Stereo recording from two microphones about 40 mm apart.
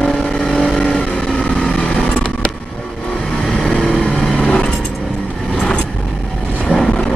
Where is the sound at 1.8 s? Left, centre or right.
Left.